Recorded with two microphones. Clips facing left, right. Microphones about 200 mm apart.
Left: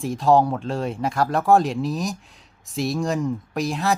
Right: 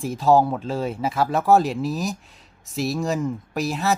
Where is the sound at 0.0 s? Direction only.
Centre (ahead or behind).